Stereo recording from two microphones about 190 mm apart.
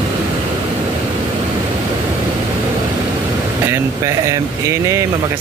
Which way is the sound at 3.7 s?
15° right (ahead or behind).